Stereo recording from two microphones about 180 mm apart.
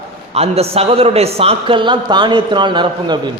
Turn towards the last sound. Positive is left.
turn(degrees=-25)  # may be behind; listen again after turning